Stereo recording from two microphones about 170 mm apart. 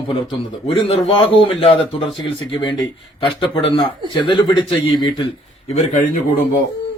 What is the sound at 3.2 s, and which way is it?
A man's voice, 30° left (ahead or behind).